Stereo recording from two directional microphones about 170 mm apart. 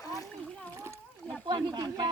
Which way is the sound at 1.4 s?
25° right (ahead or behind).